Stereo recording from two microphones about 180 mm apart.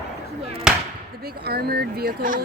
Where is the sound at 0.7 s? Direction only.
5° right (ahead or behind).